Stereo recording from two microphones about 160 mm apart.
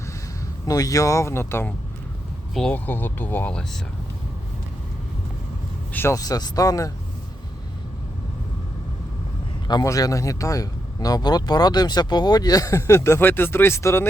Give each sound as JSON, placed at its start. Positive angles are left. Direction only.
{"t": 0.7, "sound": "speech", "side_deg": 20}
{"t": 5.9, "sound": "speech", "side_deg": 15}
{"t": 9.6, "sound": "speech", "side_deg": 25}